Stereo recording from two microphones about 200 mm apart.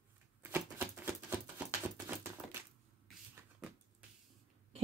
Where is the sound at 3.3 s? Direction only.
5° right (ahead or behind).